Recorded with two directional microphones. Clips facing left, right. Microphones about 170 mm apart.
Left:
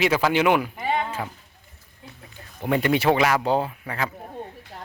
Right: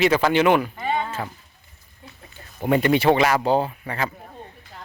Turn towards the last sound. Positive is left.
turn(degrees=0)  # may be behind; listen again after turning